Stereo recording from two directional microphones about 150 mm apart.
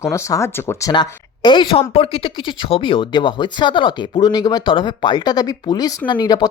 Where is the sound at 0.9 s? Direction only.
30° left (ahead or behind).